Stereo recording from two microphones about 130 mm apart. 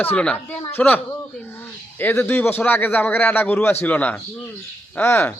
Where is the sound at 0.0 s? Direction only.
10° left (ahead or behind).